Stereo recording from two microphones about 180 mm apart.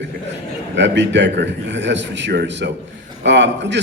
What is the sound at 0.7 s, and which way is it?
A man's voice, 75° right (ahead or behind).